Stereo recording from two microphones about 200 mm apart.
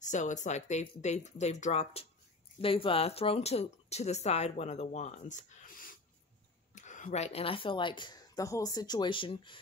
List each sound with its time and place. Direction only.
0.0 s speech: 40° left (ahead or behind)